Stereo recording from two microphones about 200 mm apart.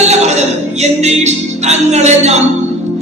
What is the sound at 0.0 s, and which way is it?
Music, 35° right (ahead or behind).